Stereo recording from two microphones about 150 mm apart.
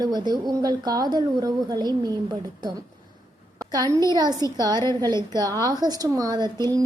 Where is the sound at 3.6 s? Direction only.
25° right (ahead or behind).